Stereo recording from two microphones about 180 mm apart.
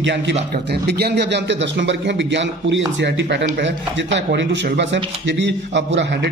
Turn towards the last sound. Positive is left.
turn(degrees=-75)  # may be behind; listen again after turning